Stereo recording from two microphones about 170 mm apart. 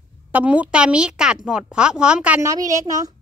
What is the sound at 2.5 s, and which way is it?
Speech, 20° right (ahead or behind).